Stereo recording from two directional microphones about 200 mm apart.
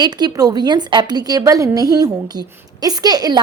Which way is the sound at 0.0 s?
20° right (ahead or behind).